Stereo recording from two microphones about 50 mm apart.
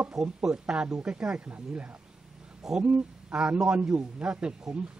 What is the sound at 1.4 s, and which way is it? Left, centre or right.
A woman's voice, right.